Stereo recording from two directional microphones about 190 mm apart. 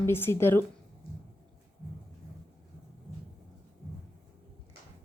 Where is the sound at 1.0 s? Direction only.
50° left (ahead or behind).